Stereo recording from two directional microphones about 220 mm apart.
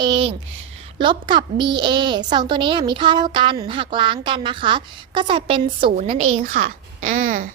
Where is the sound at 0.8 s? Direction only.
20° right (ahead or behind).